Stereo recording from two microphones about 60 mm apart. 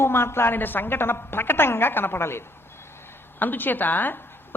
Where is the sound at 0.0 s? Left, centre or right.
Left.